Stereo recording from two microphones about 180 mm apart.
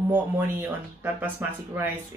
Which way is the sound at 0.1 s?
10° right (ahead or behind).